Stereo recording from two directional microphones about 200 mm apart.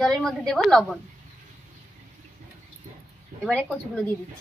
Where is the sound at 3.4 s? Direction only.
5° left (ahead or behind).